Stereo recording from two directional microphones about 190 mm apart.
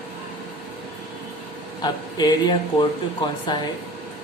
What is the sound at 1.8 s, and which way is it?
Speech, 20° left (ahead or behind).